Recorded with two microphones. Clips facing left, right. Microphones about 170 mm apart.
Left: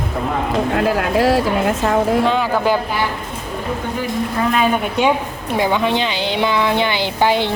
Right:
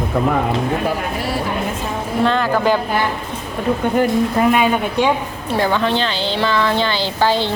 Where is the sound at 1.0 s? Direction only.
90° left.